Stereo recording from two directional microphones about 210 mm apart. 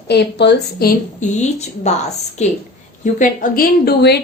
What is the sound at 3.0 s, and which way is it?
A woman's voice, 40° left (ahead or behind).